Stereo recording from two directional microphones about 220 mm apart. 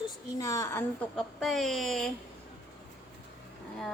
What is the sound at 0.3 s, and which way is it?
A woman's voice, 15° left (ahead or behind).